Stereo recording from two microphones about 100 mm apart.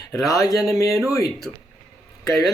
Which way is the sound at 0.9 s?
Centre (ahead or behind).